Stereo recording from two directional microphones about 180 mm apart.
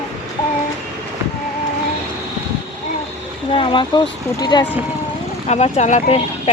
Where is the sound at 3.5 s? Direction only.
30° left (ahead or behind).